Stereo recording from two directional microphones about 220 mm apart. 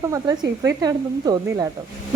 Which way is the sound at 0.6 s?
15° right (ahead or behind).